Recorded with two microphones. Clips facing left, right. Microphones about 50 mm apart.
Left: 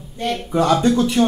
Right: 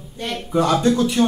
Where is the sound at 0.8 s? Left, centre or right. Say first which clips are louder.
Left 1 dB; left.